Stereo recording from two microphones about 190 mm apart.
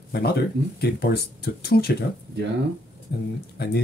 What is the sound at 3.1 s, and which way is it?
Speech, 55° left (ahead or behind).